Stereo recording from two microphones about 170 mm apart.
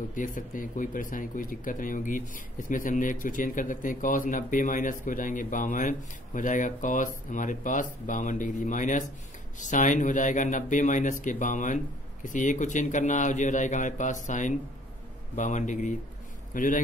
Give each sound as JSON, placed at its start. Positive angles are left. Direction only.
{"t": 0.1, "sound": "speech", "side_deg": 50}